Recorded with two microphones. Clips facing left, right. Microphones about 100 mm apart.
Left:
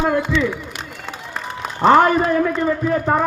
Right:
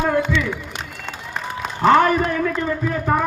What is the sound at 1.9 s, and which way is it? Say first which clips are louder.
Speech: left 2 dB; 30° left (ahead or behind).